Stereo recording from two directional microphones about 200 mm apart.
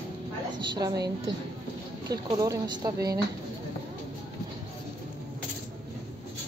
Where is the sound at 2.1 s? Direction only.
15° right (ahead or behind).